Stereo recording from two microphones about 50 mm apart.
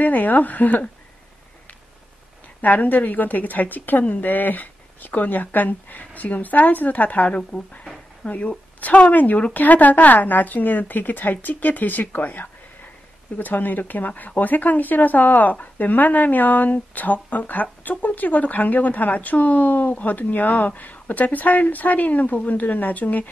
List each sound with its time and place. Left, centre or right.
0.0 s speech: left
2.6 s speech: left
7.8 s a sound: centre
8.3 s speech: left